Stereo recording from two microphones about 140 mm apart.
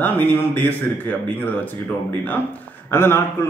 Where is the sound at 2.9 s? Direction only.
15° left (ahead or behind).